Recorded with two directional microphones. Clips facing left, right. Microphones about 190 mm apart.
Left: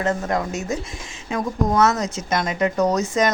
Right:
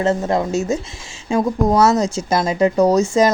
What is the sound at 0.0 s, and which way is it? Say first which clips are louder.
Speech: right 5 dB; 25° right (ahead or behind).